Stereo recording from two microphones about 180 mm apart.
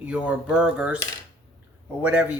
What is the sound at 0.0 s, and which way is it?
Speech, 5° right (ahead or behind).